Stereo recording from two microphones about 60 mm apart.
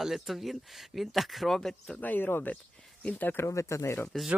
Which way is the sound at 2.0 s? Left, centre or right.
Left.